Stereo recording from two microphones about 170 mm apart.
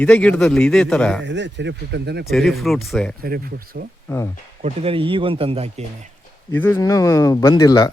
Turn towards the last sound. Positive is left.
turn(degrees=20)  # may be behind; listen again after turning